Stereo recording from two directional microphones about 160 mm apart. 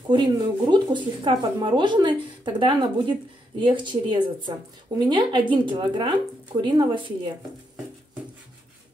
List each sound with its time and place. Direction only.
0.1 s speech: 30° right (ahead or behind)